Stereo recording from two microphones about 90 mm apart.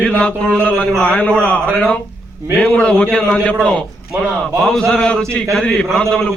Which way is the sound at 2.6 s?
10° left (ahead or behind).